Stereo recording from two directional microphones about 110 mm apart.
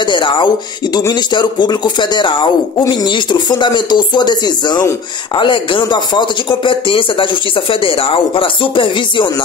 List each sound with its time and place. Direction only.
0.0 s speech: 45° left (ahead or behind)